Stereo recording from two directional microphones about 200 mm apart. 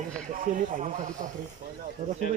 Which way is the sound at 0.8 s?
40° right (ahead or behind).